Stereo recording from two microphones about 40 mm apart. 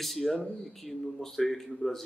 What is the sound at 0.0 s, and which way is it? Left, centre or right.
Speech, centre.